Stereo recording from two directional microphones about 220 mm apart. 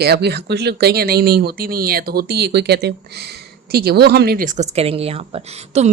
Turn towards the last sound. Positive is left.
turn(degrees=-30)  # may be behind; listen again after turning